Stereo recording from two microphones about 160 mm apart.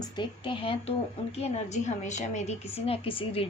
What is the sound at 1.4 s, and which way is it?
A woman's voice, 45° left (ahead or behind).